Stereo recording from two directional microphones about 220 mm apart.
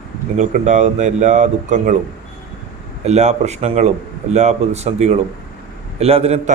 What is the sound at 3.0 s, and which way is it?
A man's voice, 30° right (ahead or behind).